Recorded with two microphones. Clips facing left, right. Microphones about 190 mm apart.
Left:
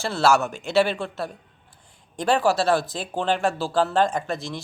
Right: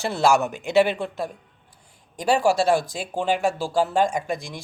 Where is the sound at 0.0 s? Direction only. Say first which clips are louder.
Right 1 dB; 15° right (ahead or behind).